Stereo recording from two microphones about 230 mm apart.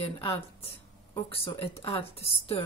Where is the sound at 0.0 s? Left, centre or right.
Left.